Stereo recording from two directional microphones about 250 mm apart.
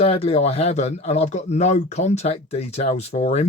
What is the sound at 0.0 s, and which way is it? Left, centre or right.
Speech, left.